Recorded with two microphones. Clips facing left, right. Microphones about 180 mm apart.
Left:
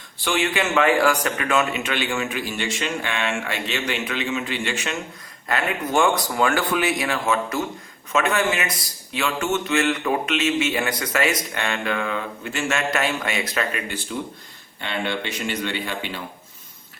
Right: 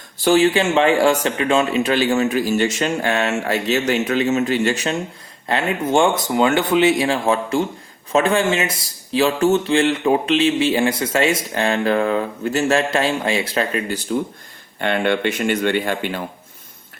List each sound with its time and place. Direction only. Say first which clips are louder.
0.2 s speech: right 8 dB; 40° right (ahead or behind)
5.5 s speech: right 5 dB; 25° right (ahead or behind)
14.8 s speech: right 8 dB; 55° right (ahead or behind)